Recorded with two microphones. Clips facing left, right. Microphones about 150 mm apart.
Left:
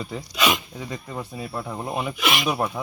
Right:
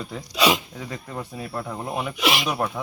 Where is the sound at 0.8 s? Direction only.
5° left (ahead or behind).